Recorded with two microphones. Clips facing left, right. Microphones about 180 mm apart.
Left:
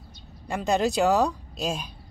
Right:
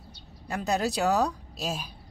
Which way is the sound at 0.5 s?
Centre (ahead or behind).